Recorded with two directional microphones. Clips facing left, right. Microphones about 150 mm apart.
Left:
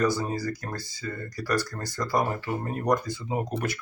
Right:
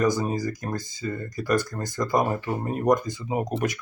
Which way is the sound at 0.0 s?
15° right (ahead or behind).